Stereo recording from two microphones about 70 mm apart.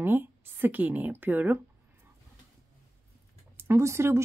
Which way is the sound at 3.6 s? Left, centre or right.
Right.